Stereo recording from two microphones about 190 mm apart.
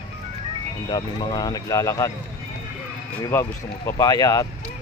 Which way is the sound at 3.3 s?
15° left (ahead or behind).